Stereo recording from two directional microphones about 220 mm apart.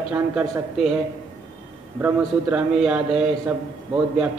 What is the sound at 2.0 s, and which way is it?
A man's voice, 5° right (ahead or behind).